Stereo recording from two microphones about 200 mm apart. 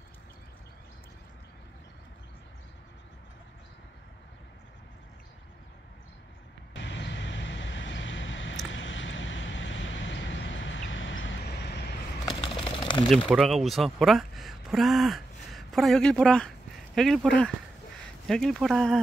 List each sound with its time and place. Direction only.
6.7 s vehicle: 65° left (ahead or behind)
12.4 s a sound: 25° left (ahead or behind)
13.3 s speech: centre (ahead or behind)